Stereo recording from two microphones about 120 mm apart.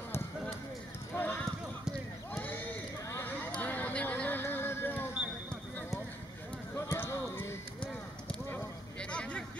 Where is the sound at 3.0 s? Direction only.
20° left (ahead or behind).